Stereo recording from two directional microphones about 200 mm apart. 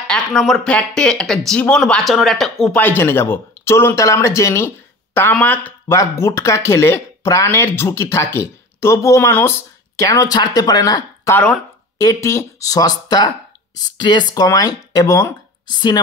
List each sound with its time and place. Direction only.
0.0 s speech: centre (ahead or behind); by 11.3 s 20° left (ahead or behind)
11.3 s speech: 5° left (ahead or behind)